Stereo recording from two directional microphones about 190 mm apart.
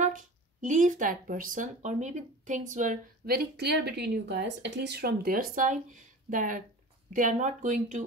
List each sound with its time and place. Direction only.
0.0 s speech: 40° right (ahead or behind)